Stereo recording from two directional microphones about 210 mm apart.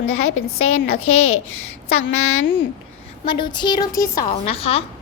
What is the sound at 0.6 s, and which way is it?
Speech, 90° left.